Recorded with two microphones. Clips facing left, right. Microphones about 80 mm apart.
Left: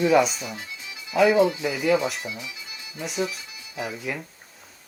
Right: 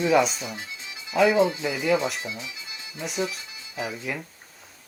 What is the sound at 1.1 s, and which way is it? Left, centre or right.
Speech, centre.